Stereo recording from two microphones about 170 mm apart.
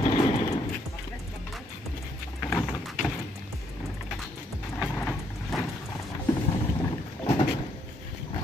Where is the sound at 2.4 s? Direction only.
5° left (ahead or behind).